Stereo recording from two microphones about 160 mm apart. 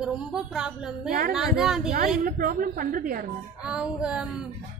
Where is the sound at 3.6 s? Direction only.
5° right (ahead or behind).